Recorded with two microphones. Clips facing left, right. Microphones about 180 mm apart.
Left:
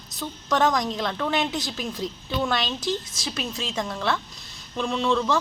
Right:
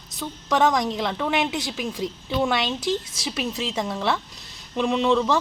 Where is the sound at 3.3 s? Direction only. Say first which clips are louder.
Right 3 dB; 5° right (ahead or behind).